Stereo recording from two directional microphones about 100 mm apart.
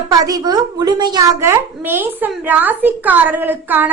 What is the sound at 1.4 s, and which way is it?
A woman's voice, 25° right (ahead or behind).